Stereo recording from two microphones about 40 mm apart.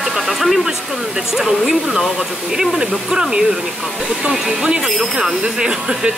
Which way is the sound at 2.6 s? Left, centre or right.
Right.